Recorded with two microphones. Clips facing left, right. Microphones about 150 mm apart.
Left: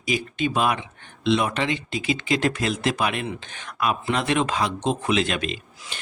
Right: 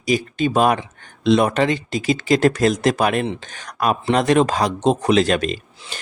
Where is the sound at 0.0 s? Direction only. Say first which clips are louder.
Right 5 dB; 40° right (ahead or behind).